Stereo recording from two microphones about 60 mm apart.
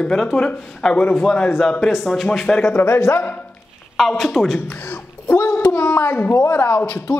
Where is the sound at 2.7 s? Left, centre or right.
Left.